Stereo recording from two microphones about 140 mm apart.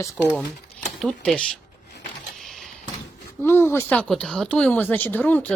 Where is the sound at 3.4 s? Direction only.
15° left (ahead or behind).